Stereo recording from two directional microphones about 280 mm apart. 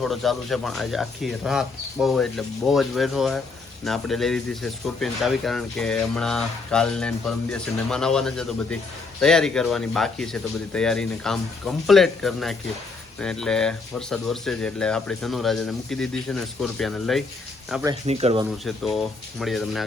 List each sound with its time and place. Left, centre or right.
0.0 s speech: centre
18.0 s speech: right
18.6 s speech: centre